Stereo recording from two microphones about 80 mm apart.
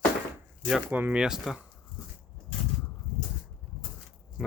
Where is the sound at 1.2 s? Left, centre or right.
Centre.